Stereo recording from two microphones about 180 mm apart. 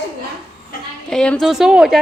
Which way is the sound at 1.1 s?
5° left (ahead or behind).